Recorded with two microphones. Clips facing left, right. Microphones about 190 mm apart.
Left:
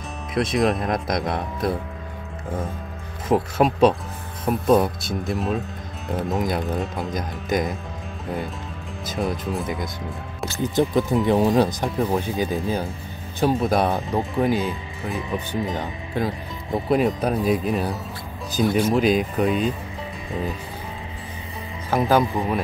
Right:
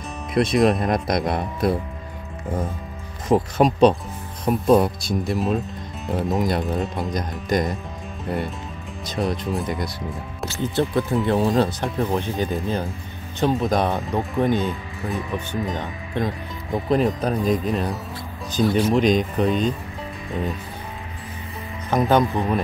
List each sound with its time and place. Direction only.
0.3 s speech: centre (ahead or behind)
3.3 s speech: 5° left (ahead or behind)
10.5 s speech: 15° left (ahead or behind)
21.9 s speech: 5° left (ahead or behind)